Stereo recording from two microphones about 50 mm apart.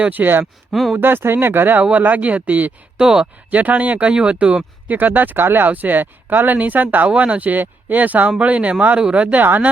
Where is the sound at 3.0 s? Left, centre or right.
Centre.